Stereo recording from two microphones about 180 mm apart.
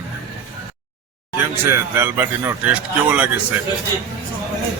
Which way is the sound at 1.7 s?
15° right (ahead or behind).